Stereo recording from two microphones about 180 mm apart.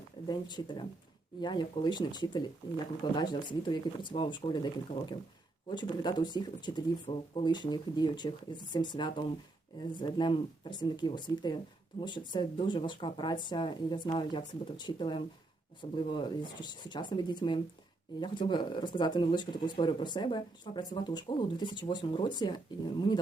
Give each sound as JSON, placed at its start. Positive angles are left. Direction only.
{"t": 0.3, "sound": "speech", "side_deg": 25}